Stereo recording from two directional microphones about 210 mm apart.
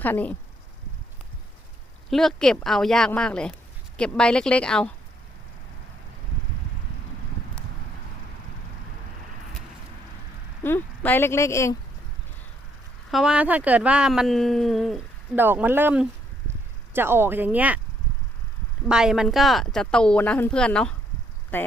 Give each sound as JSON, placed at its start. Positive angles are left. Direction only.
{"t": 0.0, "sound": "speech", "side_deg": 10}
{"t": 2.0, "sound": "speech", "side_deg": 0}
{"t": 10.6, "sound": "speech", "side_deg": 10}
{"t": 13.1, "sound": "speech", "side_deg": 0}
{"t": 18.9, "sound": "speech", "side_deg": -5}